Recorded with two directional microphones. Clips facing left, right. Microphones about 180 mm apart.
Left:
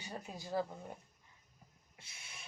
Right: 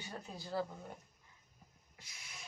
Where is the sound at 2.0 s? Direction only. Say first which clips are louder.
Right 1 dB; 30° left (ahead or behind).